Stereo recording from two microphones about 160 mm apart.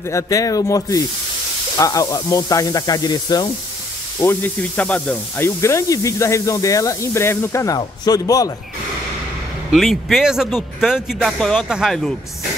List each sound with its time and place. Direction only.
0.1 s speech: 20° left (ahead or behind)
4.2 s speech: 15° left (ahead or behind)
9.7 s speech: centre (ahead or behind)